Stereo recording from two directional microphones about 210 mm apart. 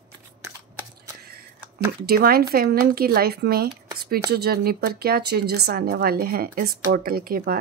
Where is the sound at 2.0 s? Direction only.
45° right (ahead or behind).